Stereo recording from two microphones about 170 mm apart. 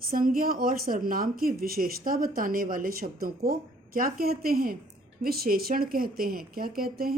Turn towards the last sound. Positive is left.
turn(degrees=-60)  # may be behind; listen again after turning